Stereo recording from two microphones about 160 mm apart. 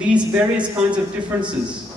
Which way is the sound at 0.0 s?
5° right (ahead or behind).